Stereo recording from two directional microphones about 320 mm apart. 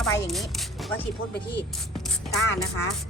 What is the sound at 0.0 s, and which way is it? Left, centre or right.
Speech, centre.